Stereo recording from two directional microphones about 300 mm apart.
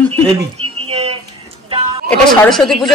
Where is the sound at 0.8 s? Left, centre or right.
Right.